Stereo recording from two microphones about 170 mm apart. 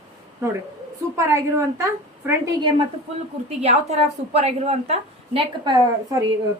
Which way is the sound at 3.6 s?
40° right (ahead or behind).